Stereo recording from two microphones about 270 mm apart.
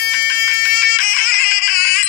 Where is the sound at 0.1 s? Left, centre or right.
Left.